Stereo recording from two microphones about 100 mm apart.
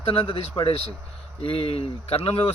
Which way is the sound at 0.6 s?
75° left (ahead or behind).